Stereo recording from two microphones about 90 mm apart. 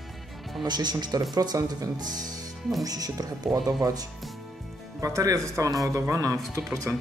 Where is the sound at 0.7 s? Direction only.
50° right (ahead or behind).